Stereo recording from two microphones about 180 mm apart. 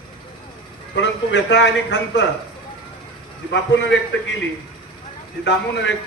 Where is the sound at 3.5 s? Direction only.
80° left.